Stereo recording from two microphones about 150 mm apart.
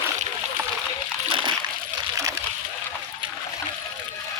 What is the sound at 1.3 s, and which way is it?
Splash, 35° right (ahead or behind).